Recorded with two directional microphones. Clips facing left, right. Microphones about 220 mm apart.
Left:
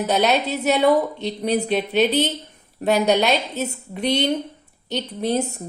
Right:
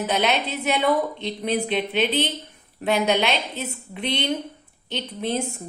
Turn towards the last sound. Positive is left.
turn(degrees=40)  # may be behind; listen again after turning